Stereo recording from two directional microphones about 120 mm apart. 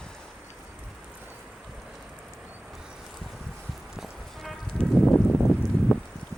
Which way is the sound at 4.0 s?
5° left (ahead or behind).